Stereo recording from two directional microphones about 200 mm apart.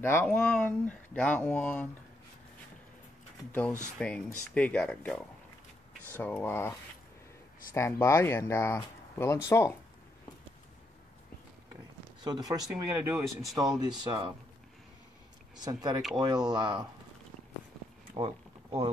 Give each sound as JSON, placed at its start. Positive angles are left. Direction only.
{"t": 0.0, "sound": "speech", "side_deg": 10}
{"t": 4.0, "sound": "speech", "side_deg": 5}
{"t": 7.7, "sound": "speech", "side_deg": 15}
{"t": 12.2, "sound": "speech", "side_deg": -20}
{"t": 15.6, "sound": "speech", "side_deg": -20}
{"t": 18.1, "sound": "a sound", "side_deg": -25}